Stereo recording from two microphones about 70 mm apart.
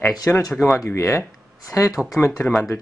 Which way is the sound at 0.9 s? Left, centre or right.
Left.